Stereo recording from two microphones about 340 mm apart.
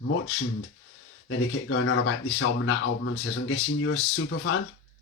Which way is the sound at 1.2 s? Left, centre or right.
Left.